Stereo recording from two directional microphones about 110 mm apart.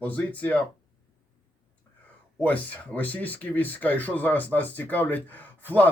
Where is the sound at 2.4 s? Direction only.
15° left (ahead or behind).